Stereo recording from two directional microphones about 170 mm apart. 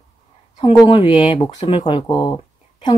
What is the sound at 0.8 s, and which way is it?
Speech, 30° left (ahead or behind).